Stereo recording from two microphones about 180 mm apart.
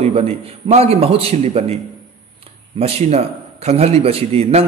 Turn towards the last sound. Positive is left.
turn(degrees=-35)  # may be behind; listen again after turning